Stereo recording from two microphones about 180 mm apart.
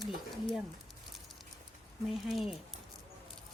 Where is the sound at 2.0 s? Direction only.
Centre (ahead or behind).